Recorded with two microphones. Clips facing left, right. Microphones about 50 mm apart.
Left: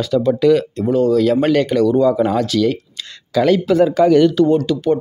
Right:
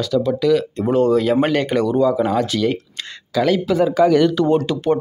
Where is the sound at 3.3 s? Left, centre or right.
Centre.